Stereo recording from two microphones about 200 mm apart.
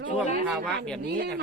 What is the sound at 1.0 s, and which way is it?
Speech, 50° right (ahead or behind).